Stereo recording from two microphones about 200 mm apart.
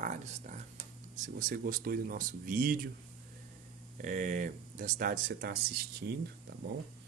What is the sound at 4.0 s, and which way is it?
Speech, 40° right (ahead or behind).